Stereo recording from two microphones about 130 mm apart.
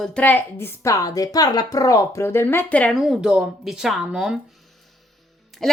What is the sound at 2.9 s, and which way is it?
Speech, 5° right (ahead or behind).